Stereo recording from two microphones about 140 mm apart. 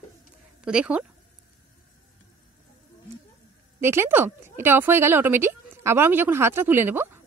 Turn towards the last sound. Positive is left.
turn(degrees=-15)  # may be behind; listen again after turning